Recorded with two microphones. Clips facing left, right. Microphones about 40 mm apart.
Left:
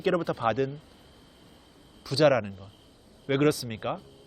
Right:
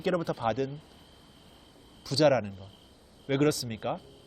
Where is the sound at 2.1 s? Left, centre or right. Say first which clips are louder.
Left 2 dB; centre.